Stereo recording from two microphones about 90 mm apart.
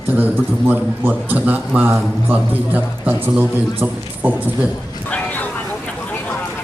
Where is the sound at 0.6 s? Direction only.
20° right (ahead or behind).